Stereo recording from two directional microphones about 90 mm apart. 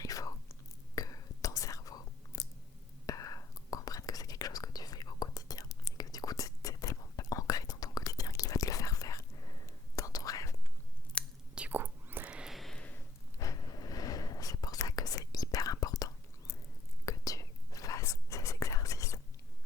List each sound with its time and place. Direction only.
0.0 s whispering: 40° left (ahead or behind)
11.2 s chewing: 10° left (ahead or behind)
11.5 s whispering: 20° right (ahead or behind)
12.3 s a sound: 5° right (ahead or behind)
13.4 s whispering: 40° left (ahead or behind)